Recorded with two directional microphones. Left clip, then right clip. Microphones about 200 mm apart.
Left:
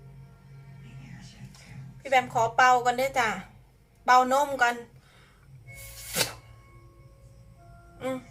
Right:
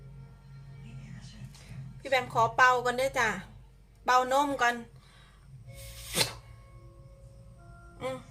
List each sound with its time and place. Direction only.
2.0 s speech: 20° right (ahead or behind)
7.9 s music: 15° right (ahead or behind)